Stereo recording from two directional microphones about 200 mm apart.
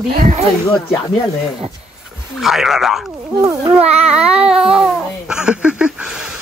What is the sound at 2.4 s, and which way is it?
Speech, centre (ahead or behind).